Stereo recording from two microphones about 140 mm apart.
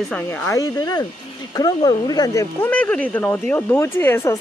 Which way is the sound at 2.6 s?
10° left (ahead or behind).